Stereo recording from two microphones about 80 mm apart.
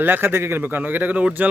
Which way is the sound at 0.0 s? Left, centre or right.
Right.